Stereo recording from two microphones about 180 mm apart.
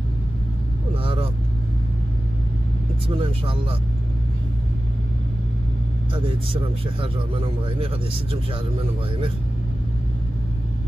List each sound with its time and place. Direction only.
0.9 s vehicle: 30° right (ahead or behind)
3.1 s a man's voice: 30° right (ahead or behind)
6.1 s a man's voice: 30° right (ahead or behind)